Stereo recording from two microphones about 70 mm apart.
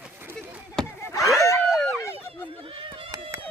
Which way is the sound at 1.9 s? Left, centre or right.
Left.